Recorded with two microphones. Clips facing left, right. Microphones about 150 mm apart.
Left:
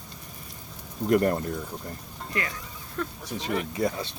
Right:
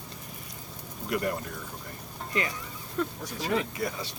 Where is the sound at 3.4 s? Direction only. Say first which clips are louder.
Left 2 dB; 25° left (ahead or behind).